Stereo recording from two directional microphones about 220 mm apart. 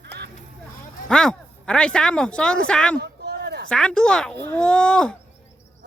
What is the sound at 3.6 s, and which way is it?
Speech, 5° left (ahead or behind).